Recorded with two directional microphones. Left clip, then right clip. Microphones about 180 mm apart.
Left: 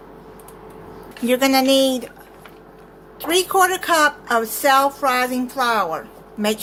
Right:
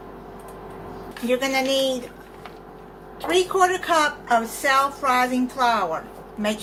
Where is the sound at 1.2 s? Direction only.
60° left (ahead or behind).